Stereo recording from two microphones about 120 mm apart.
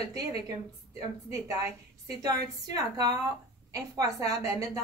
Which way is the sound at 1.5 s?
30° right (ahead or behind).